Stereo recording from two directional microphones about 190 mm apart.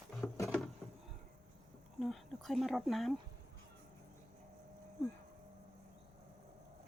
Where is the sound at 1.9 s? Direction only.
Centre (ahead or behind).